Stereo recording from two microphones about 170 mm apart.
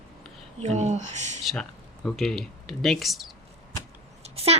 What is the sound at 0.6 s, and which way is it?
Speech, 40° right (ahead or behind).